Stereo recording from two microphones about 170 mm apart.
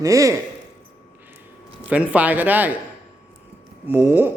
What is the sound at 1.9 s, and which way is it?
Speech, 10° right (ahead or behind).